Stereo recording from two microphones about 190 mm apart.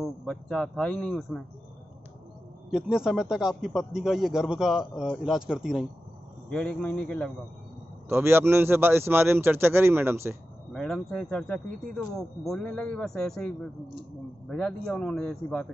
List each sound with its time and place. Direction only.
0.0 s a man's voice: 5° left (ahead or behind)
2.7 s a man's voice: 5° right (ahead or behind)
8.1 s a man's voice: 10° right (ahead or behind)
10.7 s a man's voice: centre (ahead or behind)